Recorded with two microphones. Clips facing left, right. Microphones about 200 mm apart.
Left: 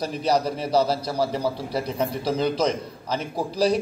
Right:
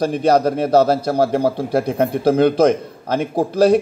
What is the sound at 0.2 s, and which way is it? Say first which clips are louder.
A man's voice: right 7 dB; 50° right (ahead or behind).